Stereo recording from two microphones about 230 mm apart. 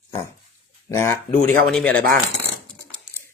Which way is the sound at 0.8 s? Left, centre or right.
Centre.